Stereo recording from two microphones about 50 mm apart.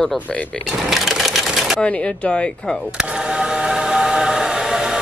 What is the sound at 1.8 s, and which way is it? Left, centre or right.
Speech, left.